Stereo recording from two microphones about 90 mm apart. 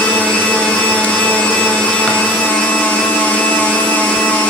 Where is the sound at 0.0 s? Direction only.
15° left (ahead or behind).